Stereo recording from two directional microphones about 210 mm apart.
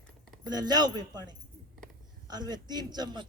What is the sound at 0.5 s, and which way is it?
A man's voice, 20° right (ahead or behind).